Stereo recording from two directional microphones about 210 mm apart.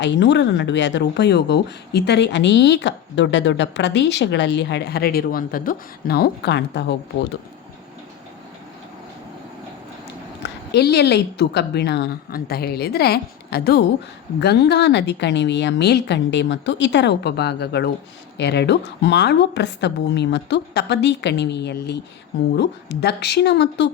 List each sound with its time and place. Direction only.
0.0 s speech: 55° left (ahead or behind)
10.4 s a woman's voice: 50° left (ahead or behind)